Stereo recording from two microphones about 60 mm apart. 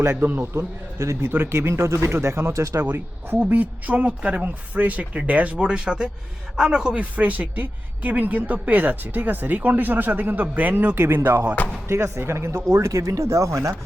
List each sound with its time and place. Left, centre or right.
0.2 s speech: right
0.5 s speech: right
2.8 s a man's voice: right; by 7.0 s centre
7.0 s speech: right
11.9 s speech: right